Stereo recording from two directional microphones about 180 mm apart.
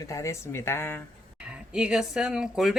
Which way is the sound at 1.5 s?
5° right (ahead or behind).